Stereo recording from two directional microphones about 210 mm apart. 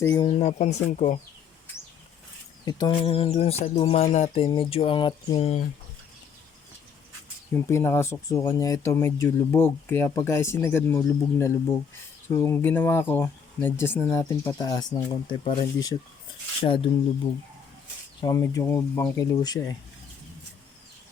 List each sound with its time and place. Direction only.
0.0 s speech: 20° left (ahead or behind)
0.3 s speech: 30° left (ahead or behind)
2.6 s speech: 20° left (ahead or behind)
7.5 s speech: 10° left (ahead or behind)
18.2 s speech: 20° left (ahead or behind)